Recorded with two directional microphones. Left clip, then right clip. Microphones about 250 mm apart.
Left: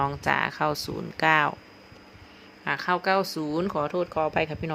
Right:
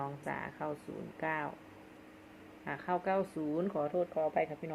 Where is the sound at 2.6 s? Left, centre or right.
Left.